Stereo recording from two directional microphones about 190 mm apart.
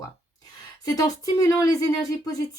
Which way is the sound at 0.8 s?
20° left (ahead or behind).